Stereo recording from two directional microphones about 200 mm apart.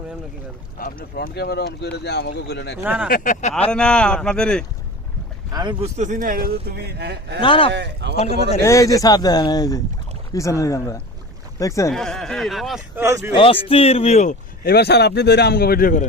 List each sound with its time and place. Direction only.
0.8 s speech: 45° left (ahead or behind)
2.8 s speech: 5° right (ahead or behind)
3.1 s speech: 40° left (ahead or behind)
3.7 s speech: 5° left (ahead or behind)
5.5 s speech: 20° right (ahead or behind)
5.8 s speech: 35° right (ahead or behind); by 7.4 s 60° right (ahead or behind)
7.4 s speech: 25° left (ahead or behind)
7.7 s speech: 60° right (ahead or behind)
8.2 s speech: 30° left (ahead or behind)
8.6 s speech: 15° left (ahead or behind)
11.9 s speech: centre (ahead or behind)
13.0 s speech: 10° right (ahead or behind)
13.3 s speech: 25° left (ahead or behind); by 16.0 s 45° left (ahead or behind)